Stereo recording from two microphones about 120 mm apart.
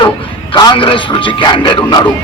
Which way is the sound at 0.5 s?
40° left (ahead or behind).